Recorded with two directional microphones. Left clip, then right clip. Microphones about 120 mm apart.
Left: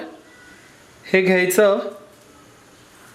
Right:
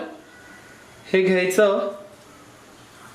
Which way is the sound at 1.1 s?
35° left (ahead or behind).